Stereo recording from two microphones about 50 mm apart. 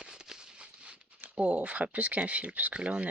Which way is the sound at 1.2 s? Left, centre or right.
Right.